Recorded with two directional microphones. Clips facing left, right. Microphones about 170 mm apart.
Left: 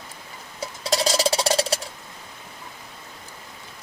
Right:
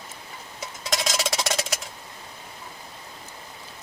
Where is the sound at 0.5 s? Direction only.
30° left (ahead or behind).